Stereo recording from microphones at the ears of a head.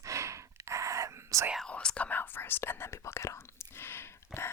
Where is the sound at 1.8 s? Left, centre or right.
Left.